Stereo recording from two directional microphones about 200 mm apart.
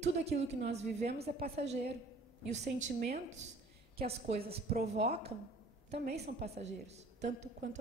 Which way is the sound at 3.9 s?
30° right (ahead or behind).